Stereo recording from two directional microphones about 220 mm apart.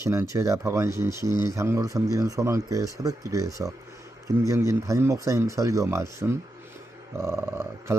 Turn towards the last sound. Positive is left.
turn(degrees=-10)  # may be behind; listen again after turning